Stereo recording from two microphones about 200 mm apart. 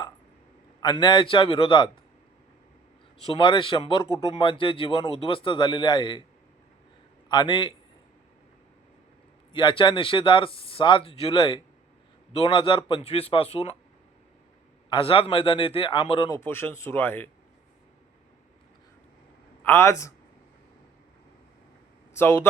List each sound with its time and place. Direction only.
0.8 s speech: 20° left (ahead or behind)
3.2 s speech: 25° left (ahead or behind)
7.3 s a man's voice: 25° left (ahead or behind)
9.5 s speech: 25° left (ahead or behind)
14.8 s speech: 25° left (ahead or behind)
16.5 s speech: 10° left (ahead or behind)
19.6 s speech: 15° left (ahead or behind)
22.1 s speech: 10° left (ahead or behind)